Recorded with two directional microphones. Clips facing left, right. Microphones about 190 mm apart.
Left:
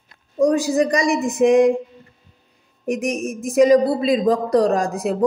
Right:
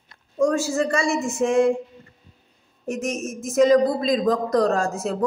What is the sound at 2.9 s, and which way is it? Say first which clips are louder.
Speech: left 4 dB; 15° left (ahead or behind).